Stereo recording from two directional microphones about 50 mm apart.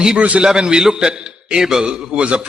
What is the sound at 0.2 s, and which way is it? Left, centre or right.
A man's voice, right.